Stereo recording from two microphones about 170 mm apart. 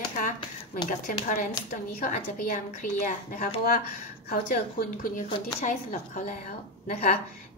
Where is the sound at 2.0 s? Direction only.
50° left (ahead or behind).